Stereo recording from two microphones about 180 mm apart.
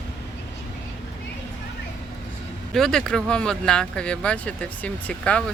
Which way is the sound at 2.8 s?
5° left (ahead or behind).